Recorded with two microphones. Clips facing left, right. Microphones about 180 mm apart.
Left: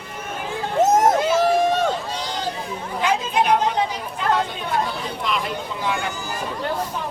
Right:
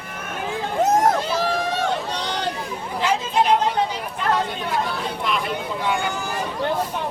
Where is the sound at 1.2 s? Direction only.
50° left (ahead or behind).